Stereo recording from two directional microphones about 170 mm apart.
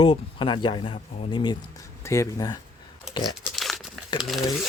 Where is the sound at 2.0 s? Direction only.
15° left (ahead or behind).